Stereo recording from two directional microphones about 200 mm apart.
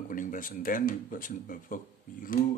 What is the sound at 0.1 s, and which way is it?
Speech, 40° left (ahead or behind).